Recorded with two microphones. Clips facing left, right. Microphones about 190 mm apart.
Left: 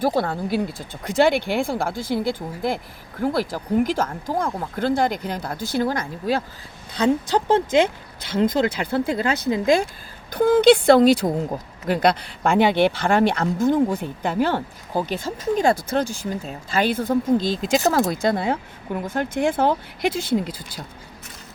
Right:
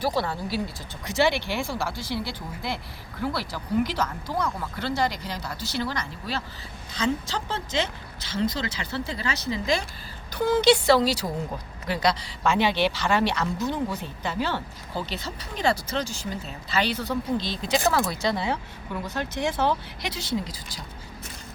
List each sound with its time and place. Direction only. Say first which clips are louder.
0.0 s a woman's voice: left 5 dB; 50° left (ahead or behind)